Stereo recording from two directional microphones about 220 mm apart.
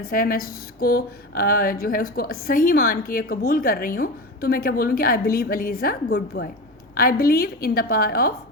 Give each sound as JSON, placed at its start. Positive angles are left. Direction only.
{"t": 0.1, "sound": "a woman's voice", "side_deg": 40}